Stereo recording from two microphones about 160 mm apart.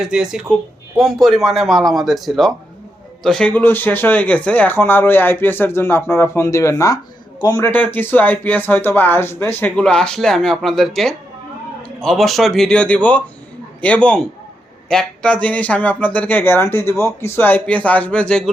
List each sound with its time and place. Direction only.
0.0 s a man's voice: 5° right (ahead or behind); by 7.7 s 20° left (ahead or behind)
7.7 s speech: 10° left (ahead or behind)